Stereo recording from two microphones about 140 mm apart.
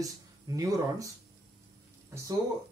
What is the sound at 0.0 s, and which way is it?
Speech, 25° right (ahead or behind).